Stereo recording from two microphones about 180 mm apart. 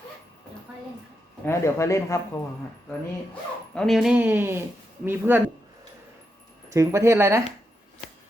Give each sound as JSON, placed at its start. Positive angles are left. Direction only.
{"t": 1.5, "sound": "speech", "side_deg": 15}
{"t": 3.8, "sound": "speech", "side_deg": 0}
{"t": 6.7, "sound": "speech", "side_deg": -15}